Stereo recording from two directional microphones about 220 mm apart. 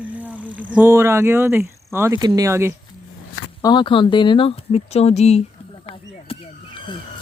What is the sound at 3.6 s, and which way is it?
Speech, 20° left (ahead or behind).